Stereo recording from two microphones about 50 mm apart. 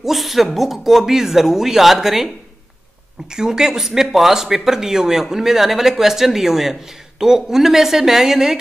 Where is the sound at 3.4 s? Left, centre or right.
Centre.